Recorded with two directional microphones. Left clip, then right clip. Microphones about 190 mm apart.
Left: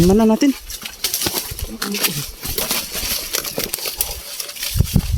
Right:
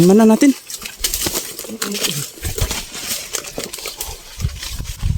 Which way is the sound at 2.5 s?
55° left (ahead or behind).